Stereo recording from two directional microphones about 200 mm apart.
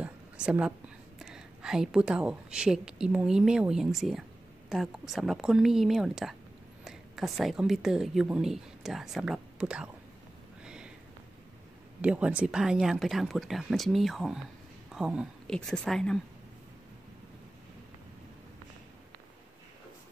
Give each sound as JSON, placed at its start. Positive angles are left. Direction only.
{"t": 0.0, "sound": "a woman's voice", "side_deg": -5}
{"t": 10.6, "sound": "a sound", "side_deg": -5}
{"t": 12.0, "sound": "speech", "side_deg": -5}